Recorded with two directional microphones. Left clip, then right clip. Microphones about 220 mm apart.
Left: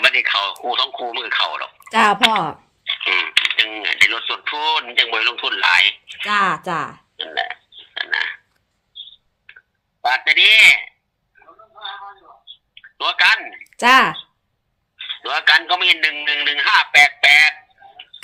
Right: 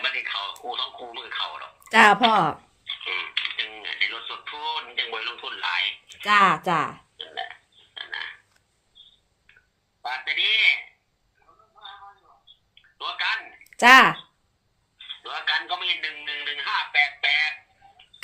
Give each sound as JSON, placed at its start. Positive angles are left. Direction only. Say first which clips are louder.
{"t": 0.0, "sound": "a man's voice", "louder": "left 12 dB", "side_deg": 50}
{"t": 1.9, "sound": "speech", "louder": "left 2 dB", "side_deg": 10}
{"t": 2.8, "sound": "coin", "louder": "left 11 dB", "side_deg": 50}
{"t": 6.2, "sound": "speech", "louder": "even", "side_deg": 15}
{"t": 7.2, "sound": "a sound", "louder": "left 12 dB", "side_deg": 50}
{"t": 9.5, "sound": "a sound", "louder": "left 12 dB", "side_deg": 50}
{"t": 10.0, "sound": "a man's voice", "louder": "left 12 dB", "side_deg": 50}
{"t": 11.3, "sound": "a sound", "louder": "left 12 dB", "side_deg": 50}
{"t": 13.7, "sound": "speech", "louder": "left 1 dB", "side_deg": 15}
{"t": 14.9, "sound": "a man's voice", "louder": "left 11 dB", "side_deg": 50}